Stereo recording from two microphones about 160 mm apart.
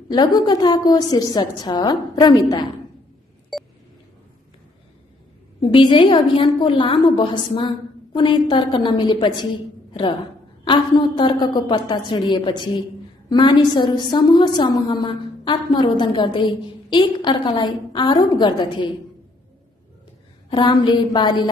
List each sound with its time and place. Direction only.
0.1 s a woman's voice: 25° left (ahead or behind)
3.5 s a sound: centre (ahead or behind)
5.6 s a woman's voice: 30° left (ahead or behind)
10.6 s a woman's voice: 30° left (ahead or behind)
20.4 s a woman's voice: 30° left (ahead or behind)